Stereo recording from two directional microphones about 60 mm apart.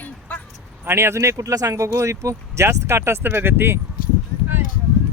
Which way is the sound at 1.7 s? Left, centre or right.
Right.